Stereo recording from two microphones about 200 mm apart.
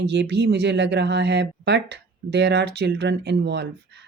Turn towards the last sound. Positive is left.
turn(degrees=-55)  # may be behind; listen again after turning